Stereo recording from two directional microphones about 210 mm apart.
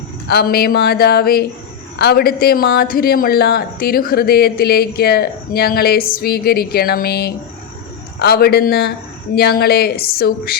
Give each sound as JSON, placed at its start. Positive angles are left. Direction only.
{"t": 0.3, "sound": "speech", "side_deg": 45}